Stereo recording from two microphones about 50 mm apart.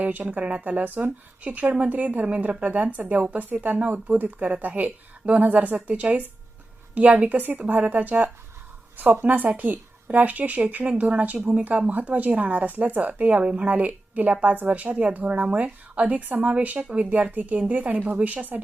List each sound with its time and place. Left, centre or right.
0.0 s speech: right
5.7 s a woman's voice: right